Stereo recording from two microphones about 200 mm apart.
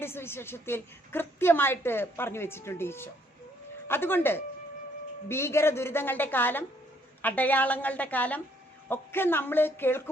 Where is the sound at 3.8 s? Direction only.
10° left (ahead or behind).